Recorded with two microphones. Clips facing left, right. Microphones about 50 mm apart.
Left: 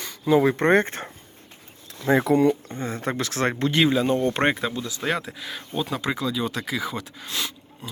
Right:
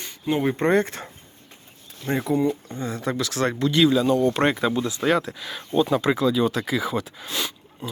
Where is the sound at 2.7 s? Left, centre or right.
Left.